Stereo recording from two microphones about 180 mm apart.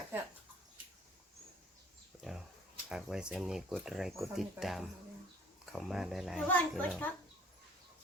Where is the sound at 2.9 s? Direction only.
5° right (ahead or behind).